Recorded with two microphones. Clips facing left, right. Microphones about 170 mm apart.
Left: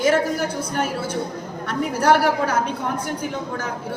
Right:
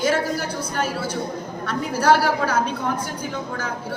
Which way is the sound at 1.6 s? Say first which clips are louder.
Even; 20° left (ahead or behind).